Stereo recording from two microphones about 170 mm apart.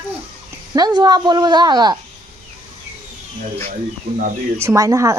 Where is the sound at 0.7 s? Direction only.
25° right (ahead or behind).